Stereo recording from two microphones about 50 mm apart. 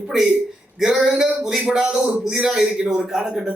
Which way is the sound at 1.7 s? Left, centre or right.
Centre.